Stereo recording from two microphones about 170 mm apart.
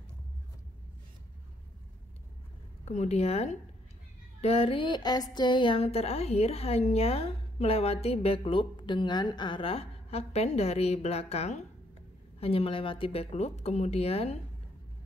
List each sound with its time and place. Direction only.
2.8 s speech: 40° left (ahead or behind)